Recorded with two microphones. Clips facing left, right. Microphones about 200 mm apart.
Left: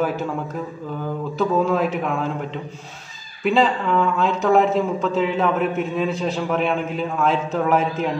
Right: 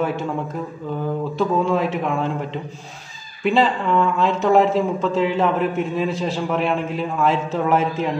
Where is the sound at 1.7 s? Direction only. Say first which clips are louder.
Even; centre (ahead or behind).